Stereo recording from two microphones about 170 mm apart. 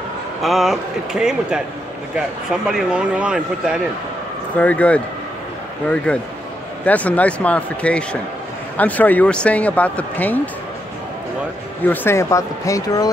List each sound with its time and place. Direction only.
0.4 s speech: centre (ahead or behind)
4.6 s speech: 10° left (ahead or behind)
6.1 s speech: 10° left (ahead or behind)
11.8 s speech: 10° left (ahead or behind)